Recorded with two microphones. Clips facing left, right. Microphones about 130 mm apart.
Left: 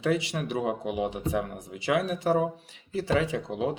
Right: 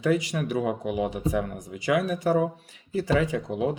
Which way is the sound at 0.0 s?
40° right (ahead or behind).